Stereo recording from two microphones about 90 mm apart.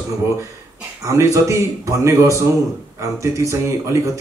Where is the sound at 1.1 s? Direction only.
35° right (ahead or behind).